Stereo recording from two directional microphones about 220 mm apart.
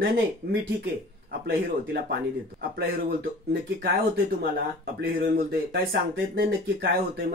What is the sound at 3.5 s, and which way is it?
Speech, 45° right (ahead or behind).